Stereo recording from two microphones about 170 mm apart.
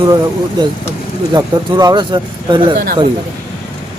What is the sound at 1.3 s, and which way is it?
Speech, 25° right (ahead or behind).